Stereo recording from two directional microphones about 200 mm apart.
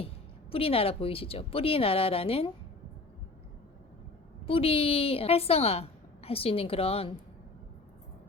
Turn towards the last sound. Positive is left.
turn(degrees=30)  # may be behind; listen again after turning